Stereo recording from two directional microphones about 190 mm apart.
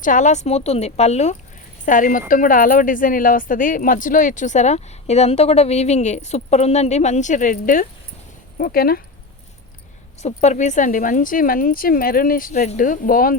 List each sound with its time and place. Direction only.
0.0 s speech: 40° left (ahead or behind)
10.2 s speech: 35° left (ahead or behind)